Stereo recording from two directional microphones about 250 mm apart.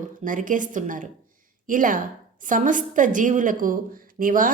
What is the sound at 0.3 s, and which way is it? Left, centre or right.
A woman's voice, right.